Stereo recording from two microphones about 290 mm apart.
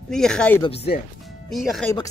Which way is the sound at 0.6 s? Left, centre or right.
Centre.